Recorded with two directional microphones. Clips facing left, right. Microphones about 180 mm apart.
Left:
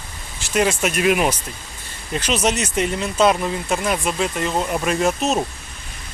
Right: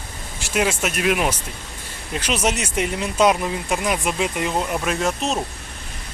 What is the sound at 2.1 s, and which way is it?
Speech, 10° right (ahead or behind).